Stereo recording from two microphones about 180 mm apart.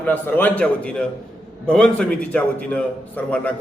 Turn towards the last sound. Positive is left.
turn(degrees=5)  # may be behind; listen again after turning